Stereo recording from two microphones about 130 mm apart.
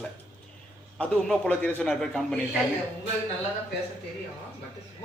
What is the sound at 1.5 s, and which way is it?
Speech, 10° left (ahead or behind).